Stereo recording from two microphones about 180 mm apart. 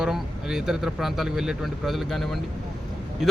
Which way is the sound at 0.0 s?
Centre (ahead or behind).